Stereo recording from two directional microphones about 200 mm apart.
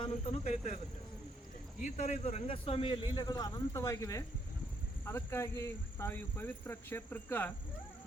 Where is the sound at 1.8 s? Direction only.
40° left (ahead or behind).